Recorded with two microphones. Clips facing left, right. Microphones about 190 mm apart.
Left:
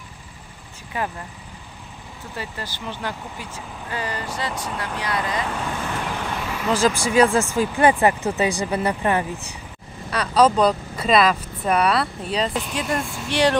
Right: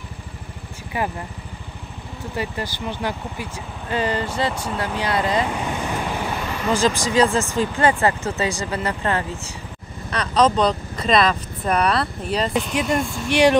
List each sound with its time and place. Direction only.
2.3 s speech: 15° right (ahead or behind)
3.9 s speech: 25° right (ahead or behind)
4.6 s speech: 5° right (ahead or behind)
5.0 s speech: 30° right (ahead or behind)
5.5 s speech: 15° right (ahead or behind); by 12.4 s centre (ahead or behind)
12.5 s speech: 15° right (ahead or behind)